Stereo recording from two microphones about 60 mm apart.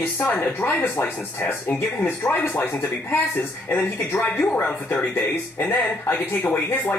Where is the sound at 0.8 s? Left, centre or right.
Left.